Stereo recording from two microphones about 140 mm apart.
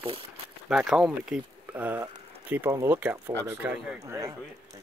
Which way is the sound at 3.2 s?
10° right (ahead or behind).